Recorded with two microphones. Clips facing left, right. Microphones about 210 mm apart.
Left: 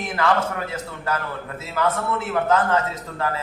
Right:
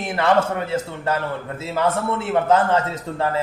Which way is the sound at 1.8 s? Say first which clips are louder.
Right 2 dB; 30° right (ahead or behind).